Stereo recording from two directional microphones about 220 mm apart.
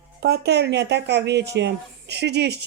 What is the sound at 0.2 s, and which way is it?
Speech, 50° right (ahead or behind).